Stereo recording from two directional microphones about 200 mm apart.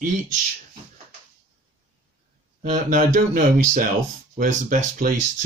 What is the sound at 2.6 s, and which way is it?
Speech, 45° right (ahead or behind).